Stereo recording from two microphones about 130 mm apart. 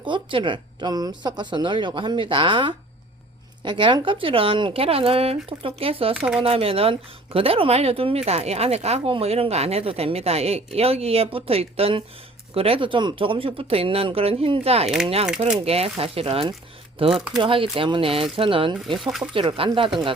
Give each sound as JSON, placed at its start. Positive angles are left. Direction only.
{"t": 0.0, "sound": "speech", "side_deg": -40}
{"t": 6.1, "sound": "speech", "side_deg": 0}
{"t": 6.4, "sound": "speech", "side_deg": -45}
{"t": 18.9, "sound": "speech", "side_deg": -5}
{"t": 19.3, "sound": "speech", "side_deg": -45}